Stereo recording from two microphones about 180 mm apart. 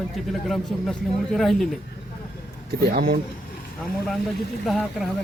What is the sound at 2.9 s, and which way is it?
Speech, 55° right (ahead or behind).